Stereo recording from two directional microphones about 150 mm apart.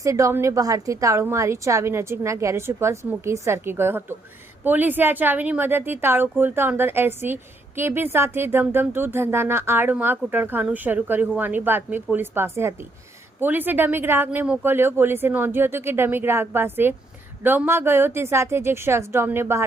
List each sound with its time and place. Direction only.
0.0 s a woman's voice: 20° right (ahead or behind)